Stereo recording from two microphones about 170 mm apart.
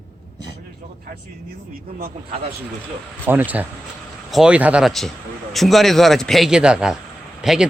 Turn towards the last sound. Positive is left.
turn(degrees=-5)  # may be behind; listen again after turning